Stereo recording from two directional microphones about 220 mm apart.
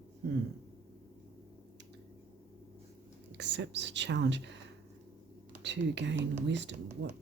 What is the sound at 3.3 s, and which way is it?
Speech, 55° right (ahead or behind).